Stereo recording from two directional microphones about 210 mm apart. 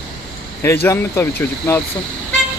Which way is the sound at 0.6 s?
10° left (ahead or behind).